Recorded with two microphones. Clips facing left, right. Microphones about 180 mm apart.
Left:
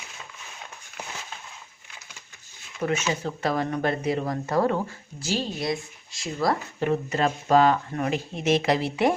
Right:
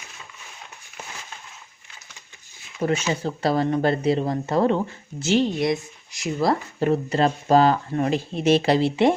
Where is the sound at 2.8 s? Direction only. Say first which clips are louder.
Right 3 dB; 30° right (ahead or behind).